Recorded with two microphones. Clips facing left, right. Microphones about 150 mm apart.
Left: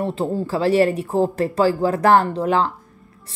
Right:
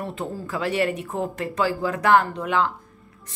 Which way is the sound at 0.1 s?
30° left (ahead or behind).